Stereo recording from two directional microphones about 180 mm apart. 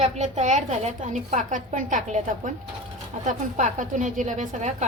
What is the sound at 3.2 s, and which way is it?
A woman's voice, 45° right (ahead or behind).